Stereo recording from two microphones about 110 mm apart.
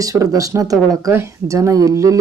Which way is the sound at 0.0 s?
30° right (ahead or behind).